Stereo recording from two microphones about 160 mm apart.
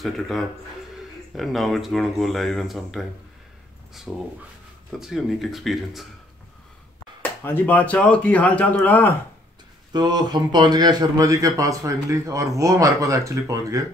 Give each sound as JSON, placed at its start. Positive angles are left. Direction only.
{"t": 0.0, "sound": "speech", "side_deg": 0}
{"t": 7.2, "sound": "speech", "side_deg": 10}
{"t": 9.9, "sound": "a man's voice", "side_deg": -25}